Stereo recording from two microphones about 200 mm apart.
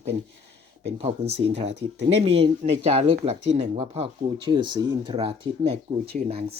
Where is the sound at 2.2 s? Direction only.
30° right (ahead or behind).